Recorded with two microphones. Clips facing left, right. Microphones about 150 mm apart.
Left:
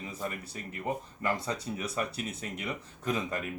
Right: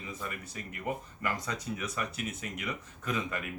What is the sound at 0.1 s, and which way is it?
Speech, 35° left (ahead or behind).